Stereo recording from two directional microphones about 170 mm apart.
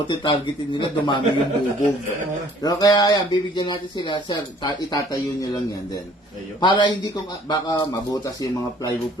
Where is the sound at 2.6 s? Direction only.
20° left (ahead or behind).